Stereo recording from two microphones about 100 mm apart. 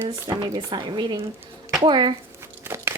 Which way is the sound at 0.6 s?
50° right (ahead or behind).